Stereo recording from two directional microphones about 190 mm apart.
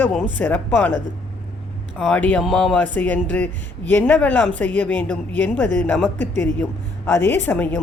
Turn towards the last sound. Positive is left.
turn(degrees=10)  # may be behind; listen again after turning